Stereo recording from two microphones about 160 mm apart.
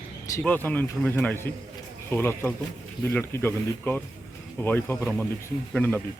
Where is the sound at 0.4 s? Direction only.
10° left (ahead or behind).